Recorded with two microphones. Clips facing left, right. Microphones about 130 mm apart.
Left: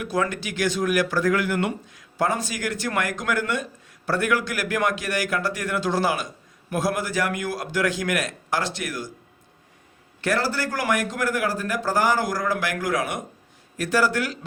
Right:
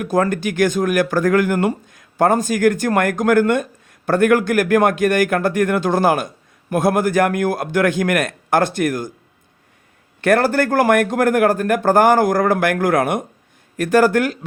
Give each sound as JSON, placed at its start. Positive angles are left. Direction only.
{"t": 0.0, "sound": "speech", "side_deg": -45}
{"t": 10.2, "sound": "speech", "side_deg": -55}